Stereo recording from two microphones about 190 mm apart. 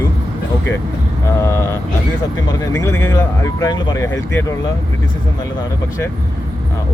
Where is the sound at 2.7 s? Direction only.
10° left (ahead or behind).